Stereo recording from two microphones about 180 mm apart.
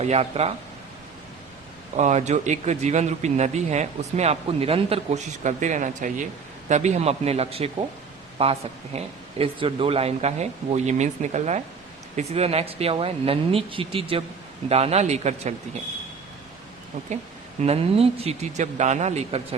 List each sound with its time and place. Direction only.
0.0 s speech: 35° right (ahead or behind)
2.0 s speech: 40° right (ahead or behind)
17.6 s speech: 35° right (ahead or behind)